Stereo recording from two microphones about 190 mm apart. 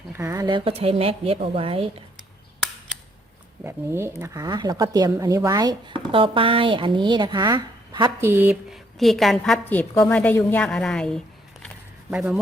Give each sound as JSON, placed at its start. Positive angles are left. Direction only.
{"t": 0.1, "sound": "speech", "side_deg": -15}
{"t": 3.6, "sound": "speech", "side_deg": -15}